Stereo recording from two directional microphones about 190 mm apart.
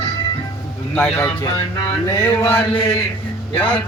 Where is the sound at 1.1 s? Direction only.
20° left (ahead or behind).